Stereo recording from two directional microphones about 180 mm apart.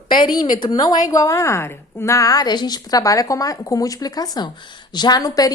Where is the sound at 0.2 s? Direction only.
25° left (ahead or behind).